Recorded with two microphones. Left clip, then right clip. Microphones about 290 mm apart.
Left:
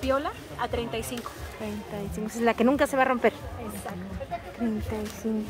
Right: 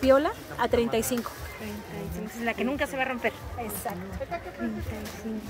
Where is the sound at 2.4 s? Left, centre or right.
Centre.